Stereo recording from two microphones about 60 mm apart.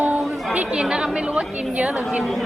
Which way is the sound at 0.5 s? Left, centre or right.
Centre.